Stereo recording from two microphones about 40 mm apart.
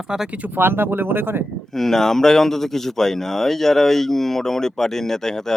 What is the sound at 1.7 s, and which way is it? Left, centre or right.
Speech, centre.